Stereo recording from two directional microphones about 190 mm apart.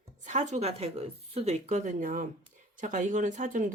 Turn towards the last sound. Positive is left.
turn(degrees=-45)  # may be behind; listen again after turning